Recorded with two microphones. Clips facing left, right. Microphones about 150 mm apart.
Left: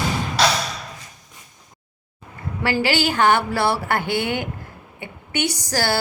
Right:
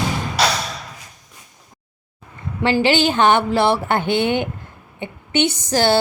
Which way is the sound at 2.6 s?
20° right (ahead or behind).